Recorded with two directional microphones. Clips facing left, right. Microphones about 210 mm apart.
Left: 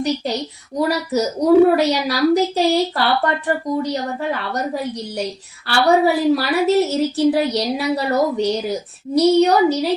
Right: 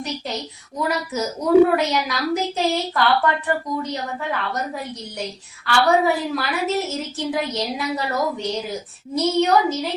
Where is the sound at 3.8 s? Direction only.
35° left (ahead or behind).